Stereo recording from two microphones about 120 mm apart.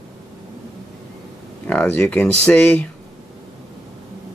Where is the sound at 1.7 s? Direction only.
10° left (ahead or behind).